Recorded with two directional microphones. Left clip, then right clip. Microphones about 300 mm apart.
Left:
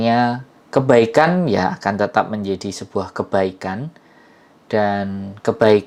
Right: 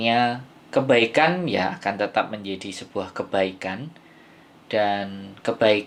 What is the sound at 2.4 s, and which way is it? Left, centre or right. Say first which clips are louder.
Speech: left 8 dB; left.